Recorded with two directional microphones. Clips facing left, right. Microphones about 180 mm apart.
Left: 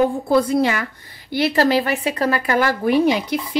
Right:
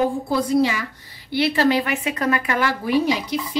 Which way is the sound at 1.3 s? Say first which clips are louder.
Left 2 dB; 45° left (ahead or behind).